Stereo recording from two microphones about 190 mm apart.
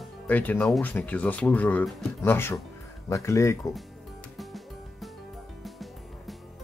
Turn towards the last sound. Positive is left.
turn(degrees=0)  # may be behind; listen again after turning